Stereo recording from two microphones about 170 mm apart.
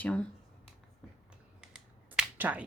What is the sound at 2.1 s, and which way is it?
Finger snapping, 5° right (ahead or behind).